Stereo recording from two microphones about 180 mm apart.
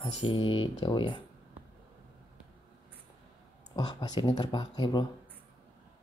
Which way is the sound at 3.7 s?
25° left (ahead or behind).